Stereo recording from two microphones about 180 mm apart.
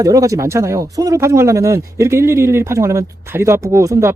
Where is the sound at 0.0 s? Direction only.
20° right (ahead or behind).